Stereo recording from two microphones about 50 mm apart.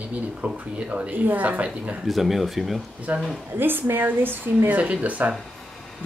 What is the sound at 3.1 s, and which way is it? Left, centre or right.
Speech, right.